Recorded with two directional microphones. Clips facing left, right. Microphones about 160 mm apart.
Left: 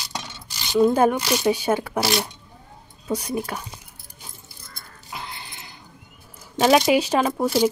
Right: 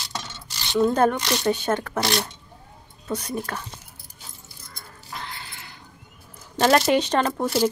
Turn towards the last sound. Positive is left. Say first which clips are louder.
# left 2 dB
turn(degrees=5)  # may be behind; listen again after turning